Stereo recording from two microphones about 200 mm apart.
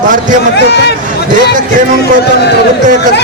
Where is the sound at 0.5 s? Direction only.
55° left (ahead or behind).